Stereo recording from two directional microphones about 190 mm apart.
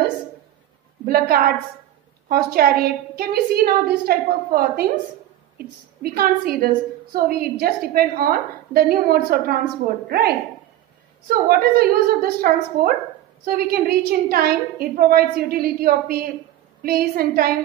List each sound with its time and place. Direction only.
1.0 s a woman's voice: 50° right (ahead or behind)